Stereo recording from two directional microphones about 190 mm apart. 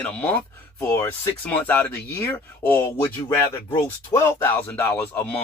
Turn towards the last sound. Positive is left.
turn(degrees=10)  # may be behind; listen again after turning